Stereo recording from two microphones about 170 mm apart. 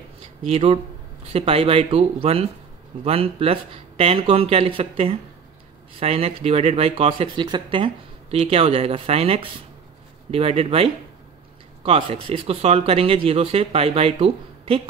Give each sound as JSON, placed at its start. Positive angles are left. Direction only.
{"t": 0.5, "sound": "speech", "side_deg": -35}